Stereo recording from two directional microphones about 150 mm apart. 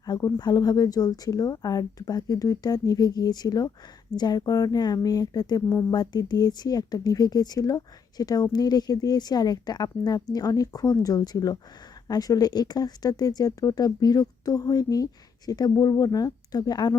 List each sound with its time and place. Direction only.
0.0 s speech: 25° left (ahead or behind)